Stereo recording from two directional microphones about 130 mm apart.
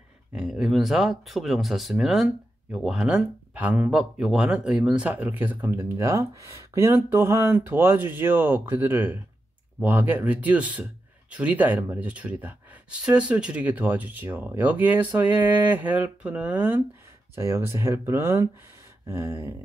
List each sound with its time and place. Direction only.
0.3 s speech: 5° right (ahead or behind); by 19.5 s 20° right (ahead or behind)